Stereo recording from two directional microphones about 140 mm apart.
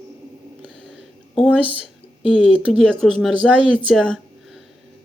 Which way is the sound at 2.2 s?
5° left (ahead or behind).